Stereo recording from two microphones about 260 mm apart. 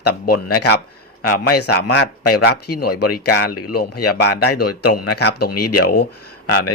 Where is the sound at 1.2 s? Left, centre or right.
Left.